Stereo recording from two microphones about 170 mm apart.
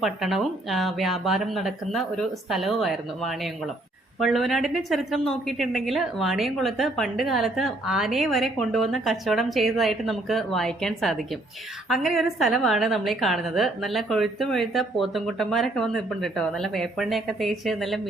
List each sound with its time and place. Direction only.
0.0 s a woman's voice: centre (ahead or behind)